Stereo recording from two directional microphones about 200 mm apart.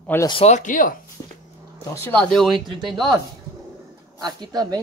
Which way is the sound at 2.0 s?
10° left (ahead or behind).